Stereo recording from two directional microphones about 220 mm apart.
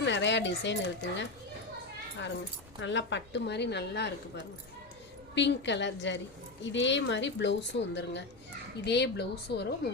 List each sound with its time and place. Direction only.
0.0 s speech: 55° left (ahead or behind)
2.1 s speech: 55° left (ahead or behind)
5.3 s speech: 50° left (ahead or behind)